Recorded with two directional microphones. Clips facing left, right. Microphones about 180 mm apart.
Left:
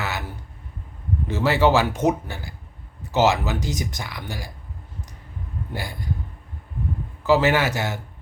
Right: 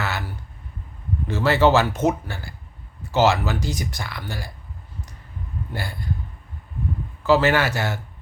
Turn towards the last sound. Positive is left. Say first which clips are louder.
# even
turn(degrees=15)  # may be behind; listen again after turning